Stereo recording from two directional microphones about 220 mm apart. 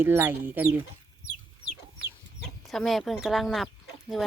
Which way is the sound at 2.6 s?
Centre (ahead or behind).